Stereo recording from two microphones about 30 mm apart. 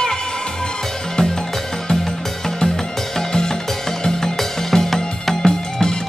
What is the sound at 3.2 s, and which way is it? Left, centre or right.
Music, centre.